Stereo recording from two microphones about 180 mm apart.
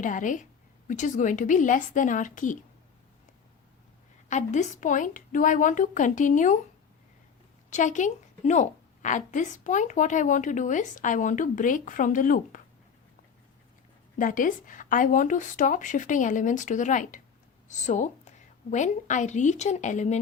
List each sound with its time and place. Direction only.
0.0 s a woman's voice: 45° left (ahead or behind)
4.3 s a woman's voice: 40° left (ahead or behind)
7.7 s a woman's voice: 45° left (ahead or behind)
14.2 s a woman's voice: 50° left (ahead or behind)